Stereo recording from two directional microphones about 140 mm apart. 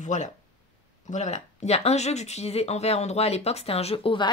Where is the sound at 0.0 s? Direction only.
55° left (ahead or behind).